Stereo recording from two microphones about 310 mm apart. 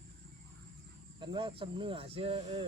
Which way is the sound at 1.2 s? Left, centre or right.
Centre.